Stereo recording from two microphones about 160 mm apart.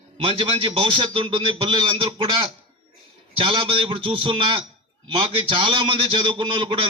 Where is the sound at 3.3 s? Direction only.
35° right (ahead or behind).